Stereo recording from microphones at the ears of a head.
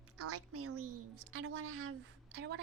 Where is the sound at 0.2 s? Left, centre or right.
Right.